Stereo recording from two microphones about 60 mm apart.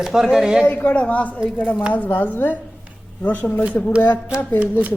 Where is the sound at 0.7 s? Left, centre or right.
Left.